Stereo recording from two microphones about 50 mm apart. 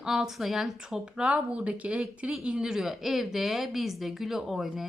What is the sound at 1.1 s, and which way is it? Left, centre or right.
A woman's voice, right.